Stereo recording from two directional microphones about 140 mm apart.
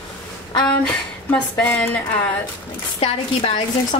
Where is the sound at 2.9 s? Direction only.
40° left (ahead or behind).